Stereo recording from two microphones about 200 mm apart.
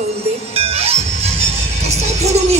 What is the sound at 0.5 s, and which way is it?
Music, 30° right (ahead or behind).